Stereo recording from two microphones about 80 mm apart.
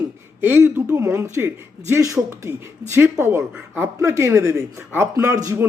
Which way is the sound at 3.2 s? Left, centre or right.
Right.